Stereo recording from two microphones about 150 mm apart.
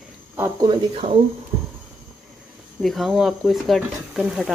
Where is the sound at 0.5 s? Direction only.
30° right (ahead or behind).